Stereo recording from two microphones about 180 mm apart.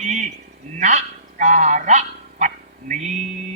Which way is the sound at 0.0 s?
40° right (ahead or behind).